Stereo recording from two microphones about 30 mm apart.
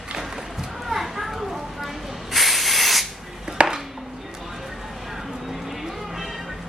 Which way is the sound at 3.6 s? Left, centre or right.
Right.